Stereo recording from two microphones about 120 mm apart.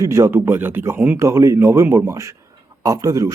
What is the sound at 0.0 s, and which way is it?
Speech, 25° right (ahead or behind).